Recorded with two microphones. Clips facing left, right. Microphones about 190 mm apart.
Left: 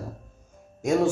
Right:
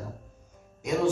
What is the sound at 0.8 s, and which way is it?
Music, 45° left (ahead or behind).